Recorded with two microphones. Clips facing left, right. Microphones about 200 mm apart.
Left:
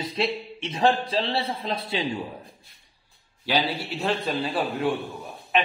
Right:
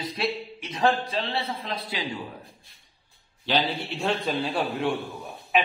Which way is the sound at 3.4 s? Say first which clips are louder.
Even; 10° left (ahead or behind).